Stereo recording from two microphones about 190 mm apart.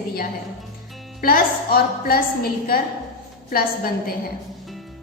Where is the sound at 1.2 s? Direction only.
50° left (ahead or behind).